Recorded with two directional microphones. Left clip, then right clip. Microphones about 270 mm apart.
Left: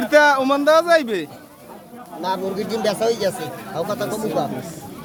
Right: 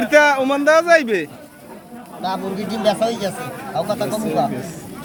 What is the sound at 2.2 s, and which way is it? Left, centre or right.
Speech, left.